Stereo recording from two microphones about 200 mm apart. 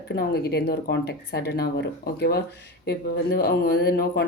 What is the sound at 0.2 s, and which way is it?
Speech, 55° left (ahead or behind).